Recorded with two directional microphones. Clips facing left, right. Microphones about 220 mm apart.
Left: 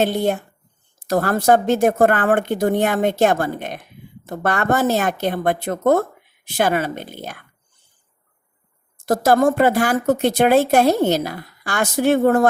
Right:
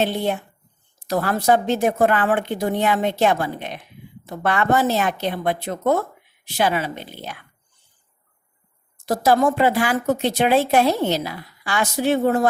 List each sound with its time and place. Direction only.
0.0 s speech: 45° left (ahead or behind)
9.0 s speech: 50° left (ahead or behind)